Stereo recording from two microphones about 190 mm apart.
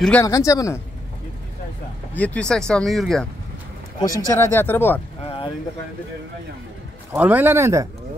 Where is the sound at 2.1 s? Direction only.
5° left (ahead or behind).